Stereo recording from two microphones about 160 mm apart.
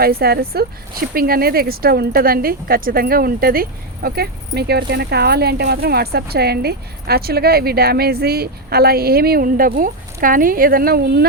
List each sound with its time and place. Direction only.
0.0 s speech: 75° right (ahead or behind)